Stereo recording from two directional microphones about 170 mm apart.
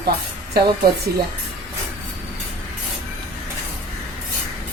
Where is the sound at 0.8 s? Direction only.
65° right (ahead or behind).